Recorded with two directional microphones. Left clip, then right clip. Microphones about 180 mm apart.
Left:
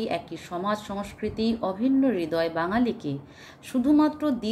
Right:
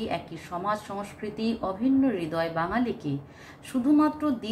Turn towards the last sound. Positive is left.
turn(degrees=45)  # may be behind; listen again after turning